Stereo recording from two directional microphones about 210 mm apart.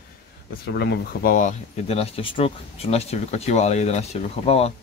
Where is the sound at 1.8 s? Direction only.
30° left (ahead or behind).